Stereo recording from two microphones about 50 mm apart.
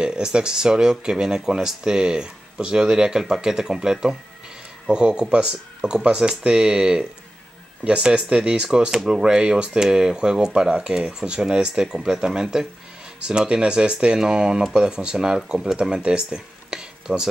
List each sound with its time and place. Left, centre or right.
0.0 s speech: centre